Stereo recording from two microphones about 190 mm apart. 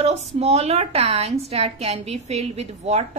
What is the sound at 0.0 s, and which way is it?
A woman's voice, 35° right (ahead or behind).